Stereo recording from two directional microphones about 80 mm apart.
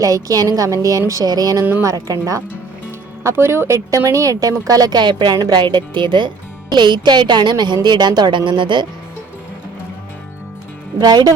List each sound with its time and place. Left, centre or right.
0.0 s a woman's voice: right
3.2 s a woman's voice: right
6.7 s a woman's voice: right
11.0 s a woman's voice: right